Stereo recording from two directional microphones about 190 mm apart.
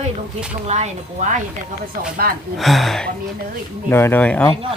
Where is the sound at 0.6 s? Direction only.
35° right (ahead or behind).